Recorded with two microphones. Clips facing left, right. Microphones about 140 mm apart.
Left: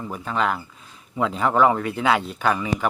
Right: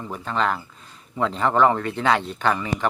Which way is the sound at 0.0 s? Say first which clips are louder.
Even; 5° left (ahead or behind).